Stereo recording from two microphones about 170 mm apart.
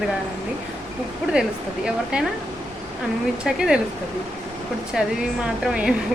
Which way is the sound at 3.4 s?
5° right (ahead or behind).